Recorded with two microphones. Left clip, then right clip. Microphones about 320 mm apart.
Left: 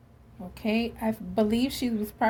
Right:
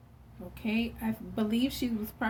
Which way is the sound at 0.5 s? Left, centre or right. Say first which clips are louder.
Left 5 dB; left.